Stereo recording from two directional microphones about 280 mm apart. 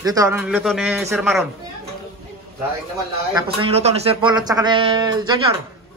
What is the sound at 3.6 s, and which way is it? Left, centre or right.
Speech, right.